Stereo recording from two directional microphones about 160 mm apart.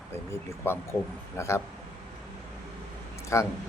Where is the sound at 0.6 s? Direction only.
15° left (ahead or behind).